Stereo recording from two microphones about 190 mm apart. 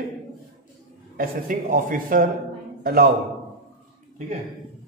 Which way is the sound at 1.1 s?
50° right (ahead or behind).